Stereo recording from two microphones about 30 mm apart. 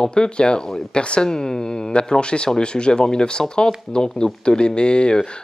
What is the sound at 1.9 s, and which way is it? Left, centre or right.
Speech, left.